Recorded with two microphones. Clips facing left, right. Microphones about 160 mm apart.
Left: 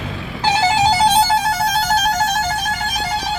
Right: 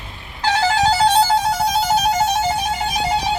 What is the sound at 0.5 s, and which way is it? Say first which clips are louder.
Music: left 1 dB; centre (ahead or behind).